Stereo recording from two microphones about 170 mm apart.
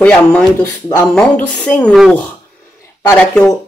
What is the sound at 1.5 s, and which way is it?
Speech, 5° left (ahead or behind).